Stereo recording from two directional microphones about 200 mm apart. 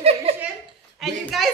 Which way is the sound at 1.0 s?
Centre (ahead or behind).